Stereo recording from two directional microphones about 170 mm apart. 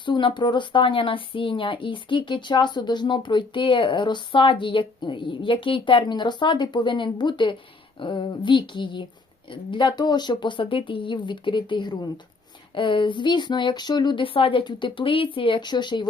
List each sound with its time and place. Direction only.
0.0 s speech: 30° left (ahead or behind)